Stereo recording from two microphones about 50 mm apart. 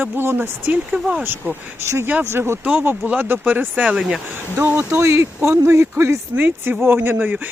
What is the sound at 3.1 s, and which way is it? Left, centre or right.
Speech, right.